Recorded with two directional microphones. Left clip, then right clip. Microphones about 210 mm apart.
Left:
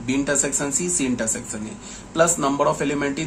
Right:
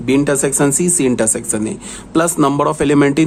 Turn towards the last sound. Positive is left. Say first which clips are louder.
# right 11 dB
turn(degrees=-55)  # may be behind; listen again after turning